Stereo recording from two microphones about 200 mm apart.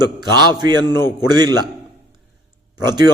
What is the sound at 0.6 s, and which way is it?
A man's voice, 20° right (ahead or behind).